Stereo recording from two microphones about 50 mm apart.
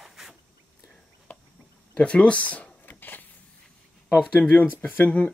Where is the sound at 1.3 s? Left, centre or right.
Left.